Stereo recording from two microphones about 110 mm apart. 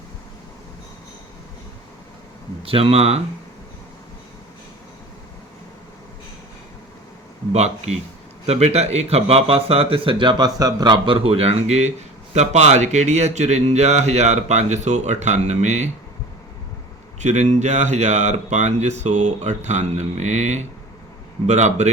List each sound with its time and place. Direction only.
2.6 s speech: 60° right (ahead or behind)
7.5 s speech: 80° right
17.2 s speech: 90° right